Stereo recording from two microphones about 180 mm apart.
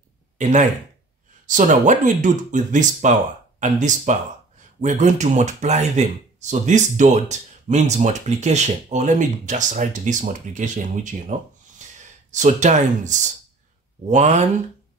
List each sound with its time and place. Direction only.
0.4 s speech: 45° right (ahead or behind)